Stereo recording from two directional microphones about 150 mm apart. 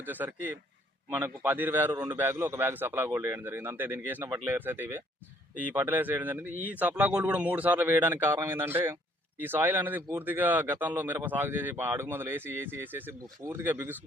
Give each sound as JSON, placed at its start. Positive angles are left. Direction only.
{"t": 0.0, "sound": "speech", "side_deg": -10}